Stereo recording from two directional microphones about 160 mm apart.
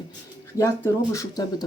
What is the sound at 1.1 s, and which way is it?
Speech, 25° left (ahead or behind).